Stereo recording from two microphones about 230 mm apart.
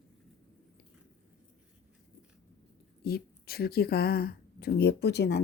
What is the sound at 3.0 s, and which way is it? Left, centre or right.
A woman's voice, left.